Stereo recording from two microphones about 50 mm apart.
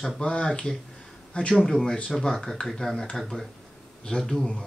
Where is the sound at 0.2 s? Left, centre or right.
Centre.